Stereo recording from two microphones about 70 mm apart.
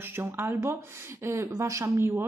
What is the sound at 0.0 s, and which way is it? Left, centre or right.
Speech, right.